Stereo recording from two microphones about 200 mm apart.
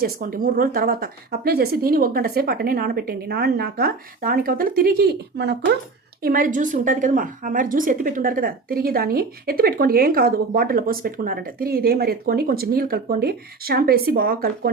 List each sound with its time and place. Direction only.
0.0 s a woman's voice: 45° right (ahead or behind)
6.2 s a woman's voice: 45° right (ahead or behind)